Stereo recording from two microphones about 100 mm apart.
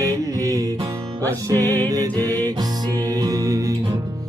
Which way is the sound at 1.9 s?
35° right (ahead or behind).